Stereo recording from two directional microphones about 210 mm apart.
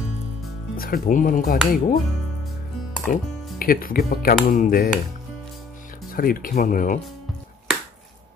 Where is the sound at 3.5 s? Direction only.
45° left (ahead or behind).